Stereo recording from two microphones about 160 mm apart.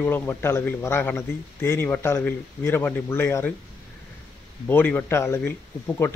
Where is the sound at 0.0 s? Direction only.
15° left (ahead or behind).